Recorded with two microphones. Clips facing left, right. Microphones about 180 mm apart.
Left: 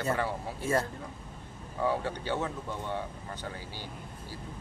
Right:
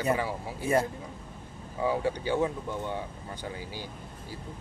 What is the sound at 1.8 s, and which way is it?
Speech, 10° right (ahead or behind).